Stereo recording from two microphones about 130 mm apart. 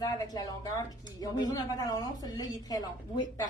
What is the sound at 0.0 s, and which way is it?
A woman's voice, 30° left (ahead or behind).